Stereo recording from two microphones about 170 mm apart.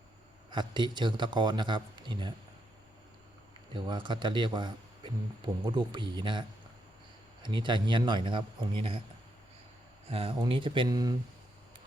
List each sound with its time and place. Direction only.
0.5 s a man's voice: 25° right (ahead or behind)
3.7 s a man's voice: 25° right (ahead or behind)
7.4 s a man's voice: 30° right (ahead or behind)
10.1 s a man's voice: 35° right (ahead or behind)